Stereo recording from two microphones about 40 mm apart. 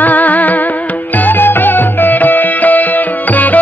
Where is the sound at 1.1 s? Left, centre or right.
Left.